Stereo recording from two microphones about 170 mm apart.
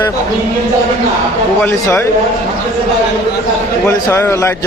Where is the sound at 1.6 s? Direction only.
15° left (ahead or behind).